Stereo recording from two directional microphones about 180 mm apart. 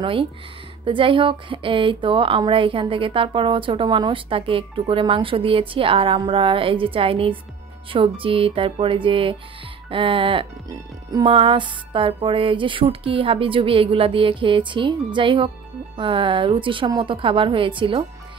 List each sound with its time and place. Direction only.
0.0 s speech: 30° right (ahead or behind)